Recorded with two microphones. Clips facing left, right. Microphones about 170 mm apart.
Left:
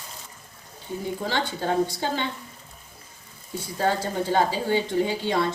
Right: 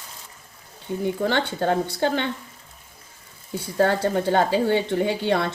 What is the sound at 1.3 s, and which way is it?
Speech, 60° right (ahead or behind).